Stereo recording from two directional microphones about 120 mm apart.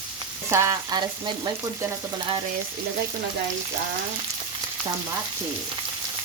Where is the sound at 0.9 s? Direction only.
35° right (ahead or behind).